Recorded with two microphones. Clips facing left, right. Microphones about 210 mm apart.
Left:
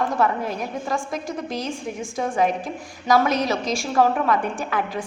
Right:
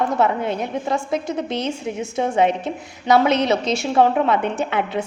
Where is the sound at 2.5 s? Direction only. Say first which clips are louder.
Right 3 dB; 70° right (ahead or behind).